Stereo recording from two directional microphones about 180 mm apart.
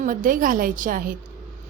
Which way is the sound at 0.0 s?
50° right (ahead or behind).